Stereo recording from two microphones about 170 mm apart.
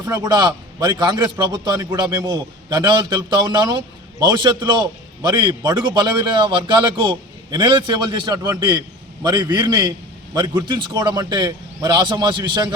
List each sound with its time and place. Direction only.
0.2 s a man's voice: 25° right (ahead or behind)